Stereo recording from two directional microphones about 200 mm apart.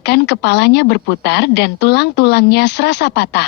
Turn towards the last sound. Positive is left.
turn(degrees=55)  # may be behind; listen again after turning